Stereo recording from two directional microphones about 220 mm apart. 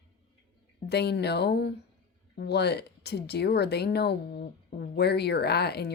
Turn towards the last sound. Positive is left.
turn(degrees=45)  # may be behind; listen again after turning